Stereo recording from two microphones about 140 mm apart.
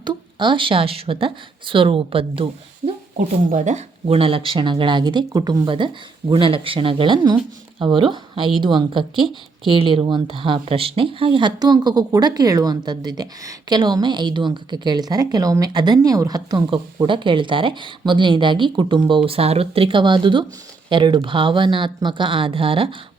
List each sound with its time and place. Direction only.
0.0 s speech: 35° right (ahead or behind)
3.5 s speech: 60° right (ahead or behind); by 23.0 s 40° right (ahead or behind)